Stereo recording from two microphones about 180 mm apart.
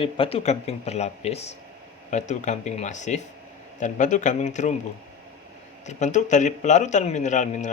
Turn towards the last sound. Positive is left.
turn(degrees=45)  # may be behind; listen again after turning